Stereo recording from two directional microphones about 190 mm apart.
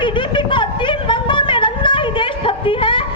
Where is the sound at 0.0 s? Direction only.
25° left (ahead or behind).